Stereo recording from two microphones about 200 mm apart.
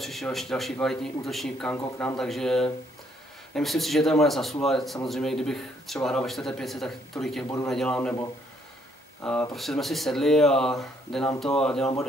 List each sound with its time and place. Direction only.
0.0 s a man's voice: centre (ahead or behind)
7.4 s speech: 15° left (ahead or behind)
7.7 s a man's voice: 5° left (ahead or behind)
9.2 s a man's voice: 5° left (ahead or behind)